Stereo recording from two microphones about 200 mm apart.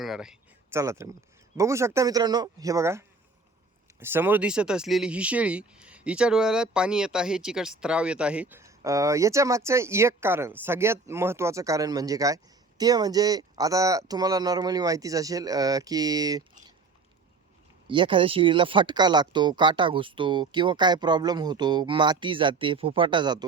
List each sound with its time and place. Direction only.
0.0 s a sound: centre (ahead or behind)
0.8 s speech: 15° right (ahead or behind)
4.0 s speech: 10° right (ahead or behind)
17.8 s speech: 25° right (ahead or behind)